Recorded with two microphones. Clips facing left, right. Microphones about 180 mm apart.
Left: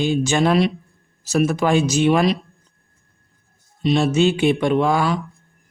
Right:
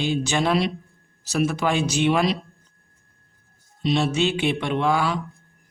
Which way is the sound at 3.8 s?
50° left (ahead or behind).